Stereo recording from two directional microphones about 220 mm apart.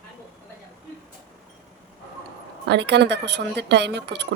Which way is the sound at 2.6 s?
50° right (ahead or behind).